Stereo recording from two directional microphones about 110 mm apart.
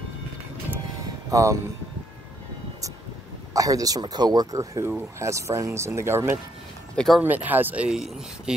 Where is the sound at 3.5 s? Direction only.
30° right (ahead or behind).